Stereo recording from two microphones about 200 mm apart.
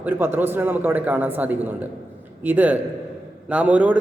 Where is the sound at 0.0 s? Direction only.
10° right (ahead or behind).